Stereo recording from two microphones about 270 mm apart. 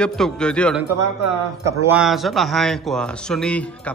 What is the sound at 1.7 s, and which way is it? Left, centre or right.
A man's voice, centre.